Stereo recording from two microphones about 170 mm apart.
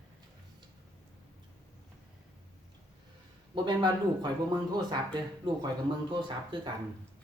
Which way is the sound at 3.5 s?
25° right (ahead or behind).